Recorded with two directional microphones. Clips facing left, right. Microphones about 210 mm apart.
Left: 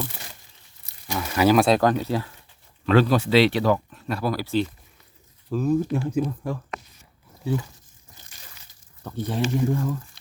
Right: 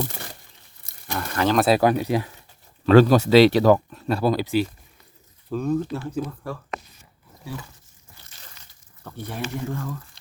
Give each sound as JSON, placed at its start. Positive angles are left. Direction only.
{"t": 1.1, "sound": "speech", "side_deg": 10}
{"t": 1.6, "sound": "speech", "side_deg": -10}
{"t": 2.8, "sound": "speech", "side_deg": -40}
{"t": 5.5, "sound": "speech", "side_deg": 5}
{"t": 9.1, "sound": "speech", "side_deg": 15}